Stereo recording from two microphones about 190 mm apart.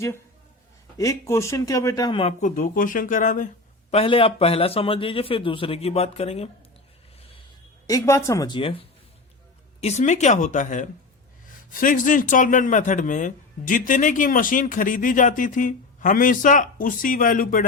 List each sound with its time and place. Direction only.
0.9 s speech: 15° left (ahead or behind)
2.4 s speech: 40° left (ahead or behind)
3.9 s a man's voice: 30° left (ahead or behind)
7.9 s speech: 15° left (ahead or behind)
9.8 s speech: 35° left (ahead or behind)